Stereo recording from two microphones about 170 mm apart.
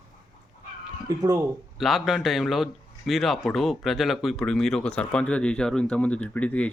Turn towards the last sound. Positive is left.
turn(degrees=10)  # may be behind; listen again after turning